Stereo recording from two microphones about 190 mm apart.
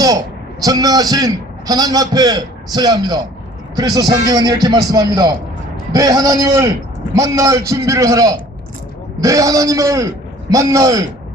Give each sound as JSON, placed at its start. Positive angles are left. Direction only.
{"t": 0.6, "sound": "a man's voice", "side_deg": -20}